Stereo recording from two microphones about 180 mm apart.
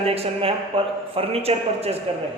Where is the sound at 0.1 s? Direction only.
35° right (ahead or behind).